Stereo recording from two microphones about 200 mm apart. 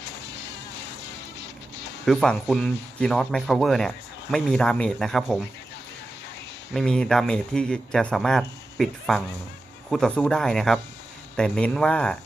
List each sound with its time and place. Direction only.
1.4 s music: 60° left (ahead or behind)
2.0 s speech: 5° left (ahead or behind)
6.7 s speech: 5° left (ahead or behind)